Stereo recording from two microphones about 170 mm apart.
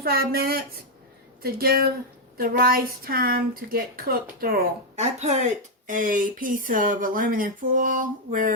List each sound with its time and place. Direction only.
0.0 s a woman's voice: 60° right (ahead or behind)
4.9 s speech: 40° right (ahead or behind)
5.9 s speech: 50° right (ahead or behind)